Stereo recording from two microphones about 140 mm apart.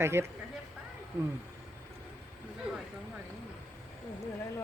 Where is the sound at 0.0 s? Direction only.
20° right (ahead or behind).